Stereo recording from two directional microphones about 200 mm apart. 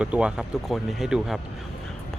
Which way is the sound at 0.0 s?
5° right (ahead or behind).